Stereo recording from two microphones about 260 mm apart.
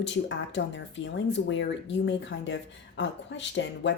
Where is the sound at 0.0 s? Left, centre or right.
Left.